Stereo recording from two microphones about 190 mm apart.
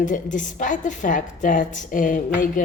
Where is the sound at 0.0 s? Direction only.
40° left (ahead or behind).